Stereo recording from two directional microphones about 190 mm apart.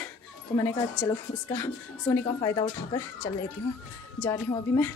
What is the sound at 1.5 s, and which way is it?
Speech, 10° left (ahead or behind).